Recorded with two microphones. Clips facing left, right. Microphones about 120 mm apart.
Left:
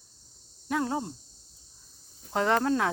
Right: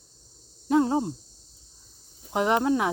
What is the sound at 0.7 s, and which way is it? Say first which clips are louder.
Speech: right 7 dB; 25° right (ahead or behind).